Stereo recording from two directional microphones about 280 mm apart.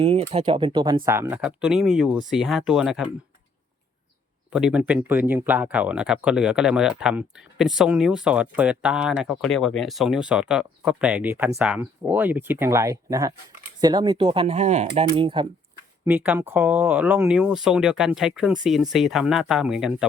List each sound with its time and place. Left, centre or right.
0.0 s speech: right; by 3.1 s centre
4.5 s speech: centre
16.0 s speech: centre